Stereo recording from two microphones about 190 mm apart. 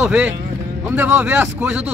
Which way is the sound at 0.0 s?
5° right (ahead or behind).